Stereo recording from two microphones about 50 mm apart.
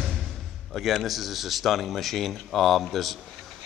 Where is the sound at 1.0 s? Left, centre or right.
Centre.